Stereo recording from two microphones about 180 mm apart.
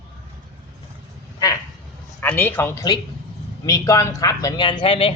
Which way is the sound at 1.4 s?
20° left (ahead or behind).